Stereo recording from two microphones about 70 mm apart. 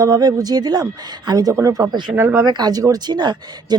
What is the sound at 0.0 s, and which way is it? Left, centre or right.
Speech, right.